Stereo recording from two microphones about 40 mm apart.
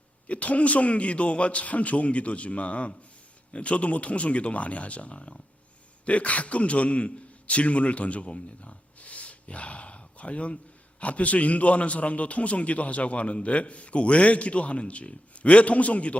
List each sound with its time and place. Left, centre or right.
0.3 s a man's voice: left